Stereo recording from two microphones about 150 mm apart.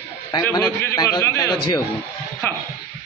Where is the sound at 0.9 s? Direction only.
25° left (ahead or behind).